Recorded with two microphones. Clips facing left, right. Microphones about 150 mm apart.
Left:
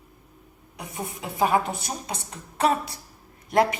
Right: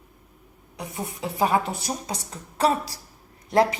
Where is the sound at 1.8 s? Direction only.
35° right (ahead or behind).